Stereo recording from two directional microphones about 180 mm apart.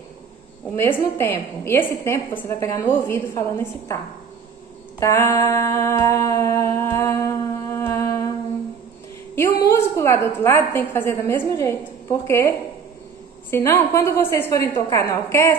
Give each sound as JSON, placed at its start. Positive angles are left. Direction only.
{"t": 0.7, "sound": "a woman's voice", "side_deg": 10}
{"t": 5.0, "sound": "a sound", "side_deg": 15}
{"t": 9.3, "sound": "a woman's voice", "side_deg": 15}